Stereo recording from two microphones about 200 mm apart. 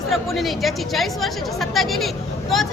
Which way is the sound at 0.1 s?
Centre (ahead or behind).